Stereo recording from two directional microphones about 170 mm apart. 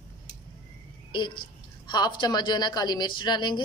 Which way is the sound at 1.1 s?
25° left (ahead or behind).